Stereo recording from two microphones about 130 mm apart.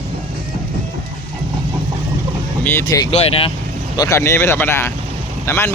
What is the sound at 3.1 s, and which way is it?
Speech, 50° left (ahead or behind).